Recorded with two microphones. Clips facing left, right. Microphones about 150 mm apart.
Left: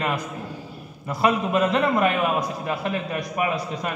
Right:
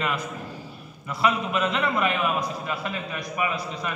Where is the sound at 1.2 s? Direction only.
40° left (ahead or behind).